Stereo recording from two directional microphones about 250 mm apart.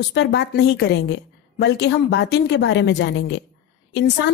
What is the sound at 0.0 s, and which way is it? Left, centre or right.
A woman's voice, left.